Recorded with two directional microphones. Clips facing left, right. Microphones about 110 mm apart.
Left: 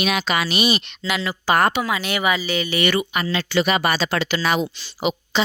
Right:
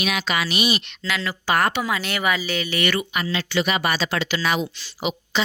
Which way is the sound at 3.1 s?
40° left (ahead or behind).